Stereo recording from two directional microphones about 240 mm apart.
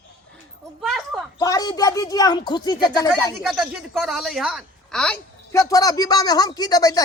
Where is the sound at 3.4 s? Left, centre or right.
Centre.